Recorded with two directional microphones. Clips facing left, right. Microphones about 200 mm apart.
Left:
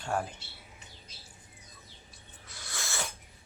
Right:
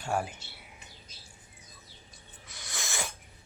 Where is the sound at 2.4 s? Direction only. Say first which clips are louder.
Right 1 dB; 15° right (ahead or behind).